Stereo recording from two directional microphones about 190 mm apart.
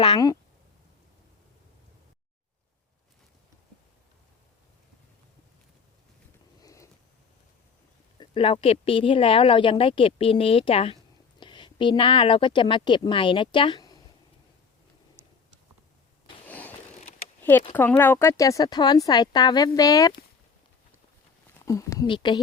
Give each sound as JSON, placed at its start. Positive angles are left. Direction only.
{"t": 0.0, "sound": "speech", "side_deg": 25}
{"t": 6.6, "sound": "a sound", "side_deg": 15}
{"t": 8.2, "sound": "a woman's voice", "side_deg": 30}
{"t": 16.5, "sound": "a sound", "side_deg": 10}
{"t": 17.7, "sound": "speech", "side_deg": 10}
{"t": 21.6, "sound": "speech", "side_deg": 15}